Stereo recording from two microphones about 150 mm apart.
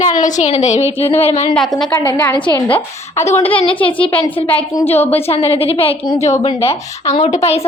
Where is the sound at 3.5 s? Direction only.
35° left (ahead or behind).